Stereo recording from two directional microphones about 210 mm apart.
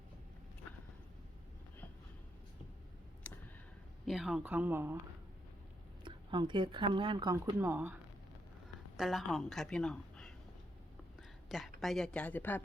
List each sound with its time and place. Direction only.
3.3 s tick: 5° left (ahead or behind)
4.0 s speech: centre (ahead or behind)
6.1 s speech: 20° right (ahead or behind)
9.0 s a woman's voice: centre (ahead or behind)